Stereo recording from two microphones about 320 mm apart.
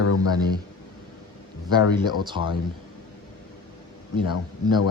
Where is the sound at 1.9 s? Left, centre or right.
Centre.